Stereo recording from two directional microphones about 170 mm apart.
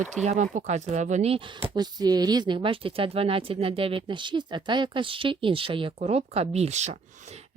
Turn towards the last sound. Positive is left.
turn(degrees=-40)  # may be behind; listen again after turning